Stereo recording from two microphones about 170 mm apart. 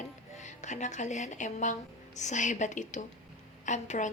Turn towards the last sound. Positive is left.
turn(degrees=45)  # may be behind; listen again after turning